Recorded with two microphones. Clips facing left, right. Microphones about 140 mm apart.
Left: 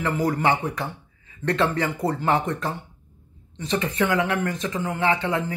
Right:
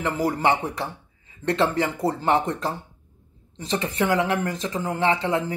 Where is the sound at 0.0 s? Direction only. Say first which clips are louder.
Even; 25° right (ahead or behind).